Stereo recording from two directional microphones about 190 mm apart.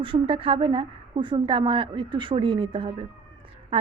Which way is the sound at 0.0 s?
25° right (ahead or behind).